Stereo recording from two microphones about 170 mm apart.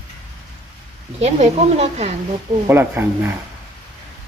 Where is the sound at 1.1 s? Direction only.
40° right (ahead or behind).